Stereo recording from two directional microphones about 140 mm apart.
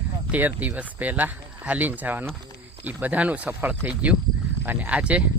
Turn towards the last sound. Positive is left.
turn(degrees=-10)  # may be behind; listen again after turning